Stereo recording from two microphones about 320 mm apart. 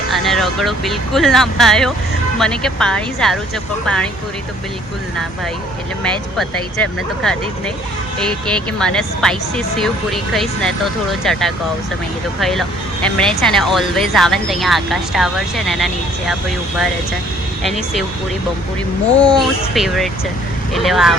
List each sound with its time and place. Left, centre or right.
0.1 s speech: centre
6.0 s speech: centre
8.8 s speech: centre
17.6 s speech: centre
19.2 s speech: centre